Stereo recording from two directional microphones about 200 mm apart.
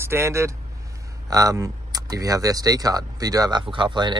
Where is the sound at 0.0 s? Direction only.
15° right (ahead or behind).